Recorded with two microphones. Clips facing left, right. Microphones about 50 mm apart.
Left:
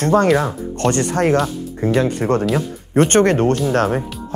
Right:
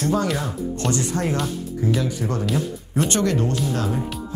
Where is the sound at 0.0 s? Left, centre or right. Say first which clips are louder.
Left 8 dB; left.